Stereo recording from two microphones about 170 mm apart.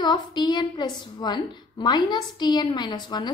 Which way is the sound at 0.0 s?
25° left (ahead or behind).